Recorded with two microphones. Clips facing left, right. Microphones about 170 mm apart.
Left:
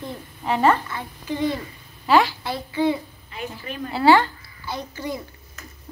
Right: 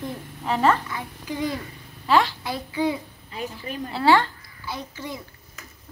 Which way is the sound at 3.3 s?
35° right (ahead or behind).